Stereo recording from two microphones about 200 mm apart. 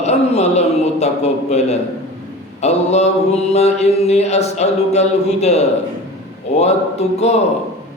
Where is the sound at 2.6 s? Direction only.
35° left (ahead or behind).